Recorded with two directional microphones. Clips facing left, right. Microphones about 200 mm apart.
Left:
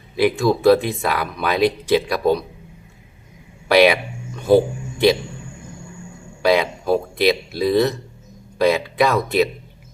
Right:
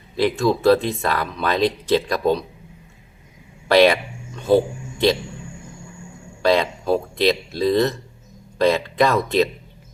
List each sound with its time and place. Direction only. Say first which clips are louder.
0.2 s speech: left 2 dB; 10° left (ahead or behind)
3.7 s a man's voice: even; 10° left (ahead or behind)
6.4 s speech: left 1 dB; 10° left (ahead or behind)